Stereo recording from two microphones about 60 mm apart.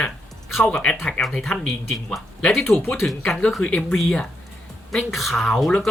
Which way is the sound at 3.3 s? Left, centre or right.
Centre.